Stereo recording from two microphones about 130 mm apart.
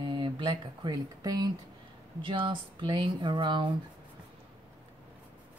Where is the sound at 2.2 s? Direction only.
40° right (ahead or behind).